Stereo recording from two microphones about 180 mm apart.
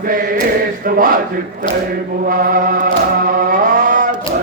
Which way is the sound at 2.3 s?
55° right (ahead or behind).